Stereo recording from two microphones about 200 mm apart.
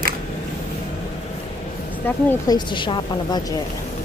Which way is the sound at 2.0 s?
20° left (ahead or behind).